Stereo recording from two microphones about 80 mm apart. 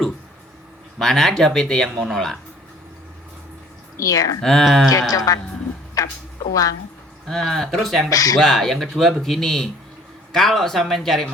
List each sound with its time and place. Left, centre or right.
0.9 s speech: centre
3.9 s a woman's voice: left
4.4 s speech: centre
5.1 s a woman's voice: left
7.3 s speech: centre
8.1 s a woman's voice: left
8.4 s speech: centre